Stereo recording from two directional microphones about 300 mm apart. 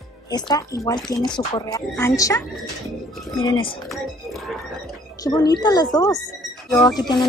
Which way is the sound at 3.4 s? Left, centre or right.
Centre.